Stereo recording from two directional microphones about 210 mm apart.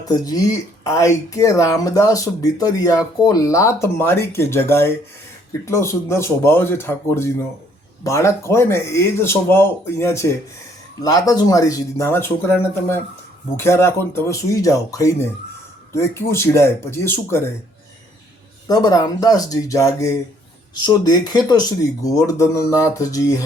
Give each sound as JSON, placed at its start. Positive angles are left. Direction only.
{"t": 0.1, "sound": "speech", "side_deg": 15}
{"t": 18.7, "sound": "speech", "side_deg": 15}